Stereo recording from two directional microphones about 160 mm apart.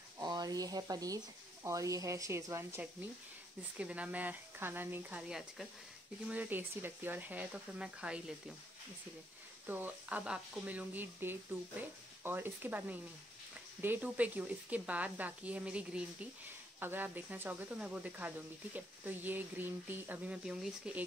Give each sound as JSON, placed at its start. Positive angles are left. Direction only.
{"t": 0.2, "sound": "speech", "side_deg": -25}
{"t": 9.7, "sound": "speech", "side_deg": -10}